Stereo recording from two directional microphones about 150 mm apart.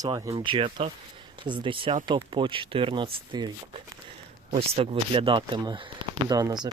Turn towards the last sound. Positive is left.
turn(degrees=-25)  # may be behind; listen again after turning